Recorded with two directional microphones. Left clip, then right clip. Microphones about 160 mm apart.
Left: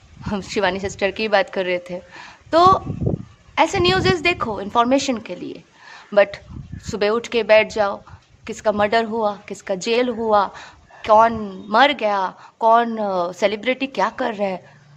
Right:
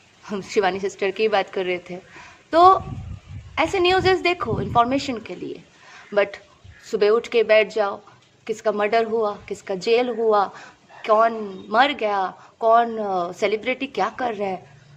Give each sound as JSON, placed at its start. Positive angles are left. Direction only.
{"t": 0.3, "sound": "a woman's voice", "side_deg": 25}